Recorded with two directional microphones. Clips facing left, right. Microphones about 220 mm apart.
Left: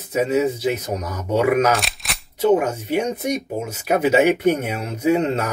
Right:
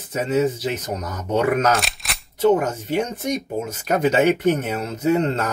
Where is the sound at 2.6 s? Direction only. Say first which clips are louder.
Left 2 dB; 10° left (ahead or behind).